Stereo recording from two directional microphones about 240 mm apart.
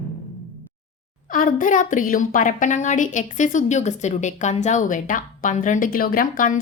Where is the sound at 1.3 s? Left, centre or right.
Left.